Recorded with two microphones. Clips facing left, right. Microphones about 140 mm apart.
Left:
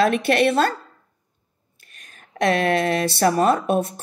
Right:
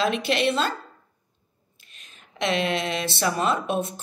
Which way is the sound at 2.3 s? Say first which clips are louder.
Left 5 dB; 50° left (ahead or behind).